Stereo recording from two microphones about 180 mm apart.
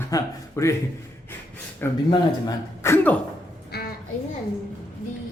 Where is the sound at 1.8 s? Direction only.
10° left (ahead or behind).